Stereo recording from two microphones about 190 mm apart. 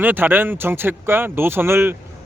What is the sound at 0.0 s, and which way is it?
A man's voice, 10° right (ahead or behind).